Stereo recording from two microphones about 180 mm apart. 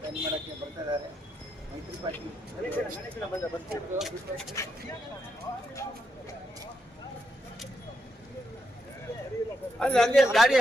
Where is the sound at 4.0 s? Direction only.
Centre (ahead or behind).